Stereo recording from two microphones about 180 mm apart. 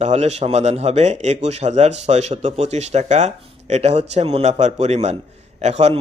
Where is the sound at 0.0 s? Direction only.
40° right (ahead or behind).